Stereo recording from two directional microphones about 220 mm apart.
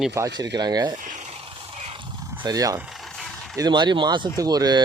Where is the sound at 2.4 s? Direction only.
15° right (ahead or behind).